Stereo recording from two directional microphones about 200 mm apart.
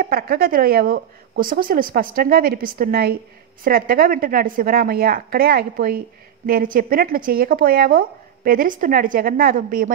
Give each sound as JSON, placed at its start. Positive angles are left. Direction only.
{"t": 0.0, "sound": "a woman's voice", "side_deg": -50}